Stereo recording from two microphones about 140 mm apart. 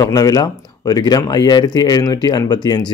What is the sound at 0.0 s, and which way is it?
Speech, 25° left (ahead or behind).